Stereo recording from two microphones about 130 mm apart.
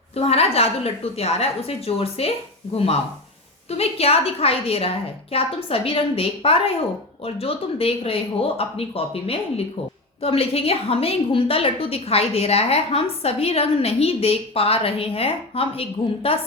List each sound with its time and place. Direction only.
0.2 s a woman's voice: 50° left (ahead or behind)